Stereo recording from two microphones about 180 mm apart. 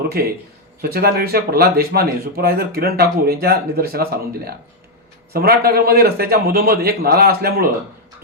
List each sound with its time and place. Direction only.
0.8 s speech: 60° right (ahead or behind)